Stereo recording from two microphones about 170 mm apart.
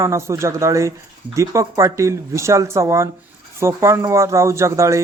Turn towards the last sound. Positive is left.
turn(degrees=-15)  # may be behind; listen again after turning